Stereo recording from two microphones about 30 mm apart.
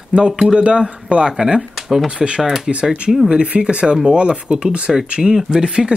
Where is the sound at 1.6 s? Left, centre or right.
Centre.